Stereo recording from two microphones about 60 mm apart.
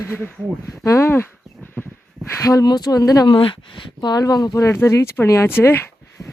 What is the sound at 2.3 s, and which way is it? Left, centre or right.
Speech, left.